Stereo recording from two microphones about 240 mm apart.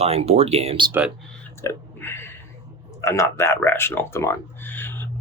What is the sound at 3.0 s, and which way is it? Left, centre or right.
Speech, centre.